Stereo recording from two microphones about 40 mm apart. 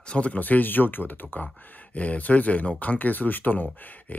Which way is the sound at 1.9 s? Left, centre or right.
Left.